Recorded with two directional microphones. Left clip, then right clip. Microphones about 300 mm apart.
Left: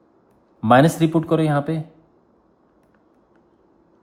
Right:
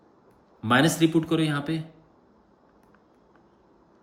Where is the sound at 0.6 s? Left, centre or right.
Centre.